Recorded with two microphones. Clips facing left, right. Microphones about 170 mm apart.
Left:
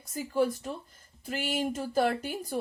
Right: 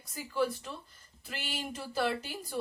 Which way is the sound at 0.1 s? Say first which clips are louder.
Left 4 dB; 45° left (ahead or behind).